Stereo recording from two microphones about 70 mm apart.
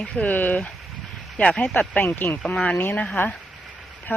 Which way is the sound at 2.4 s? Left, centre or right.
Centre.